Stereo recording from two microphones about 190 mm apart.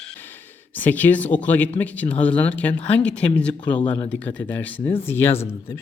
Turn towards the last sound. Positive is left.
turn(degrees=15)  # may be behind; listen again after turning